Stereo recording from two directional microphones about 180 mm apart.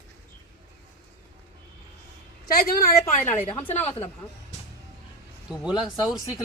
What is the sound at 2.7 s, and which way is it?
Speech, 45° left (ahead or behind).